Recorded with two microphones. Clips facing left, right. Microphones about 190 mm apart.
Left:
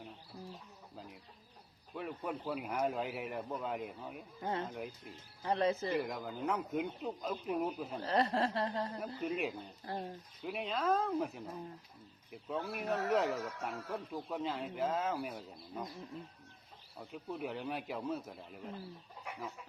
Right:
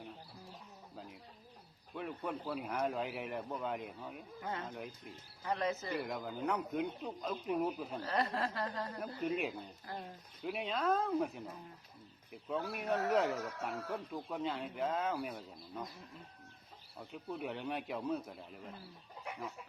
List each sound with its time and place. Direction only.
2.0 s speech: centre (ahead or behind)
4.4 s speech: 30° left (ahead or behind)
4.7 s speech: centre (ahead or behind)
5.4 s speech: 30° left (ahead or behind)
6.0 s speech: centre (ahead or behind)
8.0 s speech: 30° left (ahead or behind)
9.0 s speech: centre (ahead or behind)
9.8 s speech: 30° left (ahead or behind)
10.4 s speech: centre (ahead or behind)
17.0 s speech: centre (ahead or behind)